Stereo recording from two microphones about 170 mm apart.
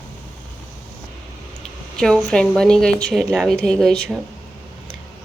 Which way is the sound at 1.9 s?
5° left (ahead or behind).